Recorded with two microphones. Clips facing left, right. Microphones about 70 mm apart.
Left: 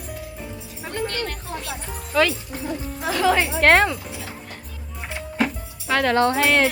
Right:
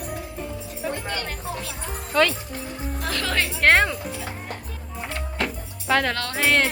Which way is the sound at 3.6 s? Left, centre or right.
Centre.